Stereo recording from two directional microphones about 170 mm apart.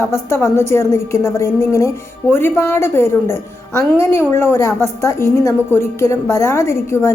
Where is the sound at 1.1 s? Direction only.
15° left (ahead or behind).